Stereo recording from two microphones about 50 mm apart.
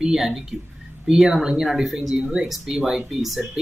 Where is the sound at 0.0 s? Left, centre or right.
Centre.